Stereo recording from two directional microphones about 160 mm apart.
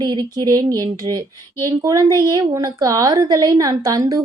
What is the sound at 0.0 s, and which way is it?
A woman's voice, 25° right (ahead or behind).